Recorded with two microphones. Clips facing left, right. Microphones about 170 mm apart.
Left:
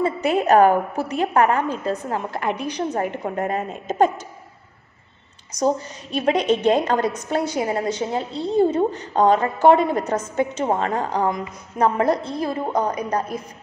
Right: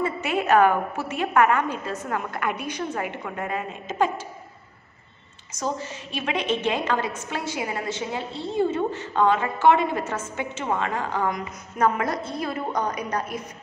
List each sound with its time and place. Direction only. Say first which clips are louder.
0.0 s a woman's voice: left 5 dB; 35° left (ahead or behind)
6.1 s a woman's voice: left 7 dB; 40° left (ahead or behind)